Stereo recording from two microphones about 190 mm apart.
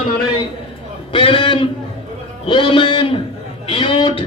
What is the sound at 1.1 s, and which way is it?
A man's voice, 25° left (ahead or behind).